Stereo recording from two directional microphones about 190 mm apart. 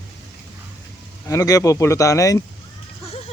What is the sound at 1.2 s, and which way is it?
Speech, 20° left (ahead or behind).